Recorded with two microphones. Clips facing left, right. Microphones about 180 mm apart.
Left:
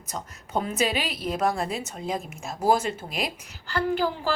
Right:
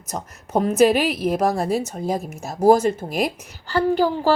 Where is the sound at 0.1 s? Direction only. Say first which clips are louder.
Right 6 dB; 40° right (ahead or behind).